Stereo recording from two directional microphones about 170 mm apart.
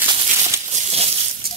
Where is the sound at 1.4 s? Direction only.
60° right (ahead or behind).